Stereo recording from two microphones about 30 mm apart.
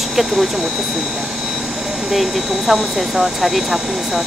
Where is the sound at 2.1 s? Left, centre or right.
Centre.